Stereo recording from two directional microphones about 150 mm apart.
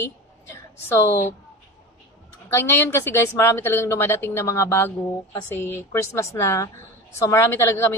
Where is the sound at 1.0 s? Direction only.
20° left (ahead or behind).